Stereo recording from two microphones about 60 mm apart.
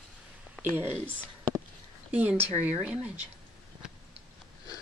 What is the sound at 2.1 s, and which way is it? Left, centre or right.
Speech, right.